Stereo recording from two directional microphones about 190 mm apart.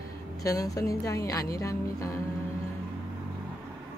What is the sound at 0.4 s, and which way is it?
Speech, 20° left (ahead or behind).